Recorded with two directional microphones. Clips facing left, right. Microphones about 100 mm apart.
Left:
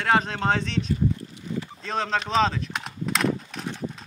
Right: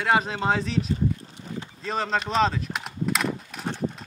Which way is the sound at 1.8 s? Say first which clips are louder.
Right 1 dB; 5° right (ahead or behind).